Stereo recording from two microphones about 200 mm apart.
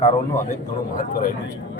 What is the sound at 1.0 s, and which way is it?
Speech, 45° left (ahead or behind).